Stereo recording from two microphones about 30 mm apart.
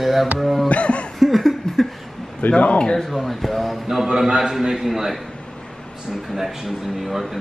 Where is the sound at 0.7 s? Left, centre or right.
Left.